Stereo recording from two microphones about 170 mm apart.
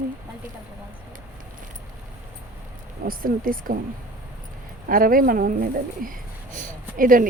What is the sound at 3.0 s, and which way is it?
Speech, 60° right (ahead or behind).